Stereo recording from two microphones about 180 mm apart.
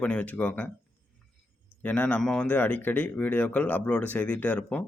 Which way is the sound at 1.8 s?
10° left (ahead or behind).